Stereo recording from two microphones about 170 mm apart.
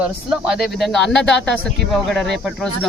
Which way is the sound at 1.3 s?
90° left.